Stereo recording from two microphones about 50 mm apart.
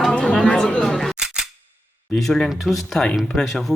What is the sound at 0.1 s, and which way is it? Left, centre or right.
Chatter, centre.